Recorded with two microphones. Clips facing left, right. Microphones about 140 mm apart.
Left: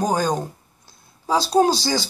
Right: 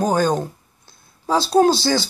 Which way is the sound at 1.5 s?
10° left (ahead or behind).